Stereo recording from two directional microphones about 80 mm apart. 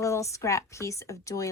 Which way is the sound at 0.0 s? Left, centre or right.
Left.